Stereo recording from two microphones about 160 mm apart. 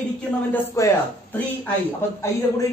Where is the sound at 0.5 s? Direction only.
15° left (ahead or behind).